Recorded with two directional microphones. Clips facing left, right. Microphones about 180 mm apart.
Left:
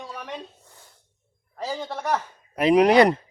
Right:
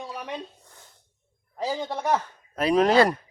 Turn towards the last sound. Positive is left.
turn(degrees=20)  # may be behind; listen again after turning